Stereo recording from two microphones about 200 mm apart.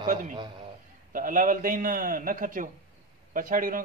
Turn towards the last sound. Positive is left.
turn(degrees=-45)  # may be behind; listen again after turning